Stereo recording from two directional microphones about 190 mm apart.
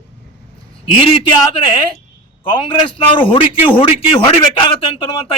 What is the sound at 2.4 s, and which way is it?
A man's voice, 25° left (ahead or behind).